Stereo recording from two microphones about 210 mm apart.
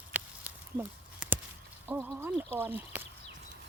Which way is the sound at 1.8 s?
10° right (ahead or behind).